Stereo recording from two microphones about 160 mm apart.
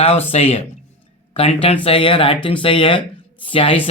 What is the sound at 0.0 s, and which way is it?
Speech, 40° left (ahead or behind).